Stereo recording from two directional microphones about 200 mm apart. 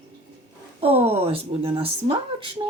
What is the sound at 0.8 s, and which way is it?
Speech, 30° right (ahead or behind).